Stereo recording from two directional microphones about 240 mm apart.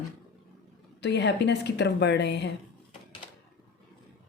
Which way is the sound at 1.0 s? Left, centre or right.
Left.